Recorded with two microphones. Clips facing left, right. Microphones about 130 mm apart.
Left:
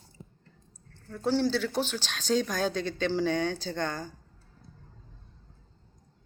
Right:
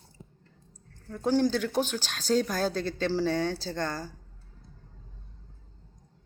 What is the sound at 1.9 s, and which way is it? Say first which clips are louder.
A woman's voice: right 1 dB; 40° right (ahead or behind).